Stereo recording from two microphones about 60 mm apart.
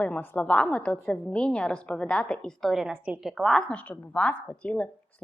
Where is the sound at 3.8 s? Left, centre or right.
Left.